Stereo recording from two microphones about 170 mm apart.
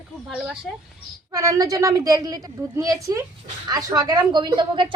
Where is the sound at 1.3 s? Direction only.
20° right (ahead or behind).